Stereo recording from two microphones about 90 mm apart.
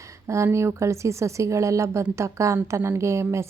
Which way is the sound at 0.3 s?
30° right (ahead or behind).